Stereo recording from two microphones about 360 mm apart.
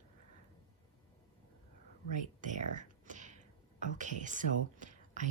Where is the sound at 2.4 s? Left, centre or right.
Right.